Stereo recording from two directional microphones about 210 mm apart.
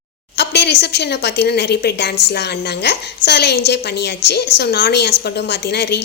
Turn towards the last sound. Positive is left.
turn(degrees=50)  # may be behind; listen again after turning